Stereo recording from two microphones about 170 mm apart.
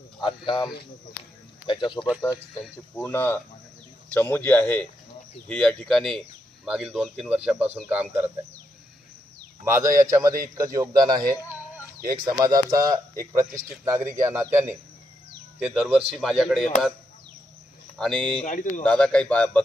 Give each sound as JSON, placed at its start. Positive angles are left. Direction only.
{"t": 0.2, "sound": "speech", "side_deg": 30}
{"t": 2.6, "sound": "speech", "side_deg": 0}
{"t": 3.0, "sound": "a man's voice", "side_deg": 10}
{"t": 9.6, "sound": "speech", "side_deg": -15}
{"t": 17.9, "sound": "speech", "side_deg": 5}
{"t": 18.4, "sound": "speech", "side_deg": 50}
{"t": 18.8, "sound": "a man's voice", "side_deg": 5}